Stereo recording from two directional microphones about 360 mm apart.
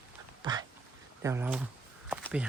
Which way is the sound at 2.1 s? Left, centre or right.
Centre.